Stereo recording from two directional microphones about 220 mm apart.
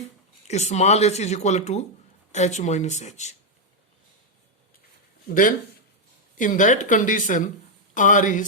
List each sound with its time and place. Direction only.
0.4 s speech: 30° left (ahead or behind)
5.3 s speech: 40° left (ahead or behind)